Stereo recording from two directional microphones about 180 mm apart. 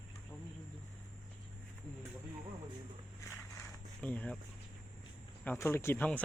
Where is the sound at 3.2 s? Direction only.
15° left (ahead or behind).